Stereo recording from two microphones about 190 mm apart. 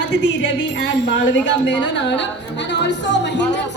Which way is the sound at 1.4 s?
70° left (ahead or behind).